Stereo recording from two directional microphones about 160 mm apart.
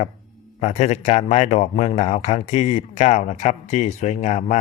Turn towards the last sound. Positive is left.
turn(degrees=45)  # may be behind; listen again after turning